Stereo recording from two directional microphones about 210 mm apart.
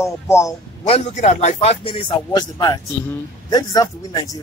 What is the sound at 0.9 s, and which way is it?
Speech, 35° left (ahead or behind).